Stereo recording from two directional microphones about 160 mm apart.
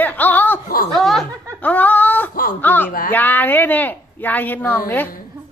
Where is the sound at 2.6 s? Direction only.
15° left (ahead or behind).